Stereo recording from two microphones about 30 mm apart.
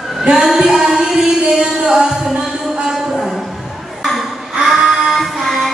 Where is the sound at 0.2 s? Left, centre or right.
Centre.